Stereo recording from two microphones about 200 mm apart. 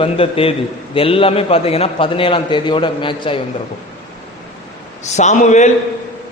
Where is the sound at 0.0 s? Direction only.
30° left (ahead or behind).